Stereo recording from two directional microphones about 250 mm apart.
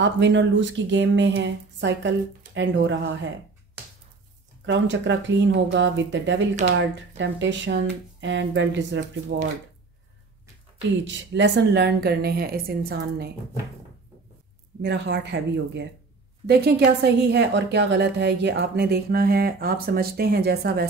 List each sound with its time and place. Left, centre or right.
0.0 s speech: right
4.6 s speech: right
11.1 s a woman's voice: right
14.8 s a woman's voice: right